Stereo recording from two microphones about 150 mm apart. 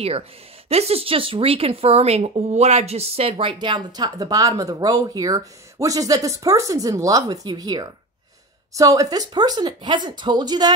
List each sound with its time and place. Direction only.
0.7 s speech: 45° right (ahead or behind)